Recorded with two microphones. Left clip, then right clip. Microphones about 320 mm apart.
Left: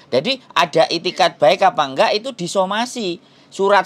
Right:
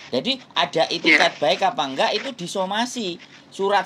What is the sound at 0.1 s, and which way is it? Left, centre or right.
Speech, left.